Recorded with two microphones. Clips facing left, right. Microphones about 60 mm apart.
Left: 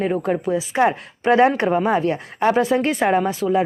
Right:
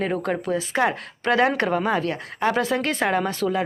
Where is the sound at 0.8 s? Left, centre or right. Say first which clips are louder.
Left 5 dB; left.